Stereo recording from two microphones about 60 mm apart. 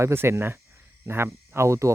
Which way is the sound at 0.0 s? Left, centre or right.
Right.